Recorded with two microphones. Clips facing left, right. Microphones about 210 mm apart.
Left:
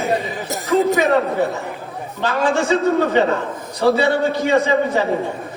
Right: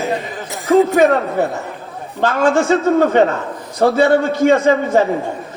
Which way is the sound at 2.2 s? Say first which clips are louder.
Right 4 dB; 50° right (ahead or behind).